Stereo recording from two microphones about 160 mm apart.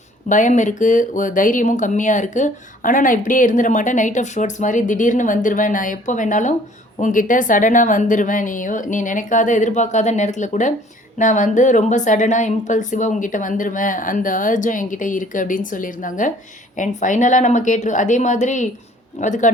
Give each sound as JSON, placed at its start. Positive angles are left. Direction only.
{"t": 0.3, "sound": "speech", "side_deg": 50}